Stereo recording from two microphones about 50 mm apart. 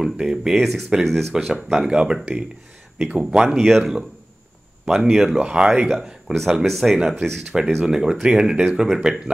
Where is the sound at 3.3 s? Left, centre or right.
Centre.